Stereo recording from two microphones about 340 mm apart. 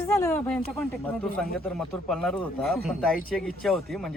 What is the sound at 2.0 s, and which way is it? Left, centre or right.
Speech, centre.